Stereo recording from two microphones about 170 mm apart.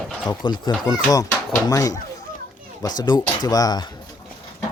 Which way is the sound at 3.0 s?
25° left (ahead or behind).